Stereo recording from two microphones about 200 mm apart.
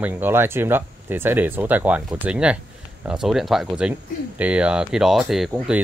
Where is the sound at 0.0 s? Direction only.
10° right (ahead or behind).